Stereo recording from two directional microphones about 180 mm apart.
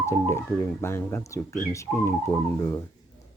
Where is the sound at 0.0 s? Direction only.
15° left (ahead or behind).